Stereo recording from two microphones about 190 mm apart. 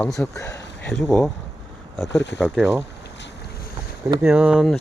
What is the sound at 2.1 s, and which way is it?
Speech, 70° left (ahead or behind).